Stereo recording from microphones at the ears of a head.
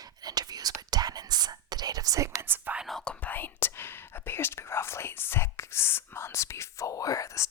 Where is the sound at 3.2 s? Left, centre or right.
Left.